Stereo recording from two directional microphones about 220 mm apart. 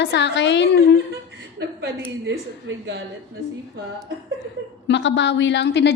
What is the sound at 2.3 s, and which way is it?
Speech, 55° right (ahead or behind).